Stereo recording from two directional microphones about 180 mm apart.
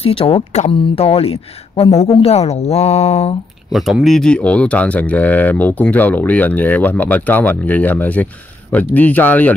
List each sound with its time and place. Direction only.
0.0 s speech: 30° left (ahead or behind)
3.7 s speech: centre (ahead or behind)